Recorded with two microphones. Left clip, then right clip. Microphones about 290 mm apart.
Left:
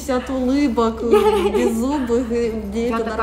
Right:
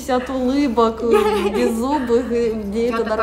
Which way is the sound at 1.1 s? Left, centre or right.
Centre.